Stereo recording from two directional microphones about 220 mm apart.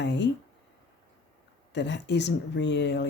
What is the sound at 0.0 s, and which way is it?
Speech, 50° left (ahead or behind).